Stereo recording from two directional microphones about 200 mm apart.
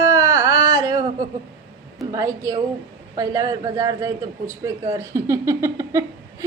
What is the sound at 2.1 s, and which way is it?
A man's voice, 15° right (ahead or behind).